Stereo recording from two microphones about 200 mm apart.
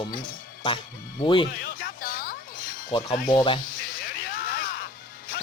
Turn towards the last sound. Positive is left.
turn(degrees=45)  # may be behind; listen again after turning